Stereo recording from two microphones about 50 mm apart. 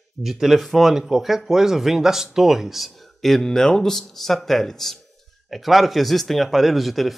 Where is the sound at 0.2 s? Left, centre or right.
Centre.